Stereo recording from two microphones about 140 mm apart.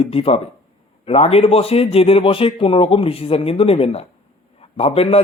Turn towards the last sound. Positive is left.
turn(degrees=45)  # may be behind; listen again after turning